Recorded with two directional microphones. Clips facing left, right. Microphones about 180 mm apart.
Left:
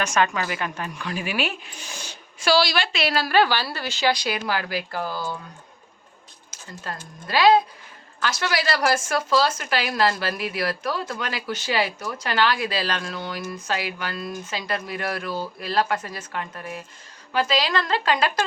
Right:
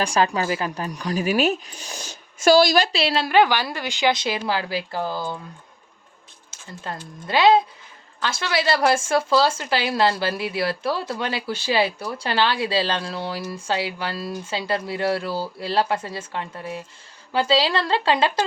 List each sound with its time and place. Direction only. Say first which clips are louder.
0.0 s a woman's voice: right 2 dB; 35° right (ahead or behind)
6.9 s a woman's voice: right 3 dB; 20° right (ahead or behind)